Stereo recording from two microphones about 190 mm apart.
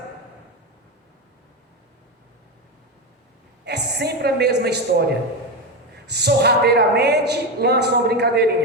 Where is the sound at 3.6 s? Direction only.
60° right (ahead or behind).